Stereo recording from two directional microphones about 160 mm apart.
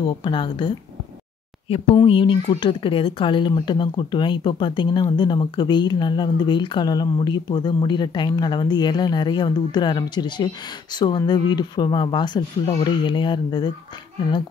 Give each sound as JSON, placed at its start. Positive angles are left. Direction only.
{"t": 0.2, "sound": "speech", "side_deg": 30}
{"t": 2.0, "sound": "speech", "side_deg": 35}